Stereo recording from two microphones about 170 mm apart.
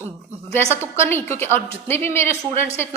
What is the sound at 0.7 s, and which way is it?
A woman's voice, 15° left (ahead or behind).